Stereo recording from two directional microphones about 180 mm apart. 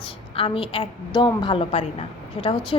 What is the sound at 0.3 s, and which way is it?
A woman's voice, 30° left (ahead or behind).